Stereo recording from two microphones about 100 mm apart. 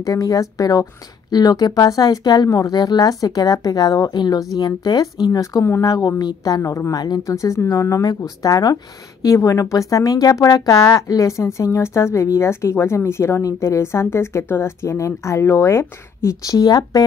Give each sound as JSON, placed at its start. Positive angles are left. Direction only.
{"t": 0.0, "sound": "speech", "side_deg": 35}